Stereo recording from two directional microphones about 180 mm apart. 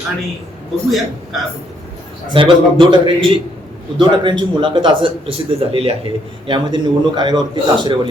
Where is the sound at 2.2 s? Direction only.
30° right (ahead or behind).